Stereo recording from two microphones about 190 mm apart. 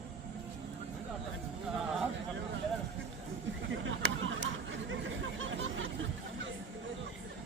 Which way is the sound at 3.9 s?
90° right.